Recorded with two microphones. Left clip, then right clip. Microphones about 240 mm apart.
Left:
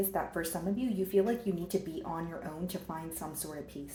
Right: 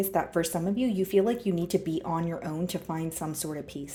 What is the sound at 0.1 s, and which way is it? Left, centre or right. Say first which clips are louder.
Speech: right 7 dB; right.